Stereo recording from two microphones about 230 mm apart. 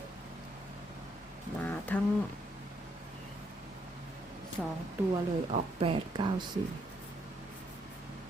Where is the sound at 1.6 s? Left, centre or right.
Centre.